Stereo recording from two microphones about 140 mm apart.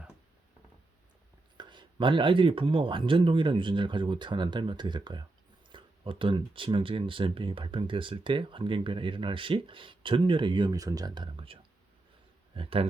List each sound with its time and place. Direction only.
1.5 s a man's voice: 35° right (ahead or behind)